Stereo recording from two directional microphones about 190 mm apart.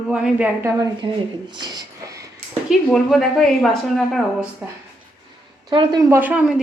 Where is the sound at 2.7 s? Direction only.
Centre (ahead or behind).